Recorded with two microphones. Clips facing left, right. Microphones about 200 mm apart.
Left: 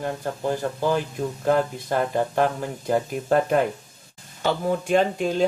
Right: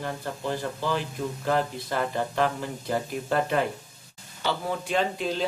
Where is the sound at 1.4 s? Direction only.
50° left (ahead or behind).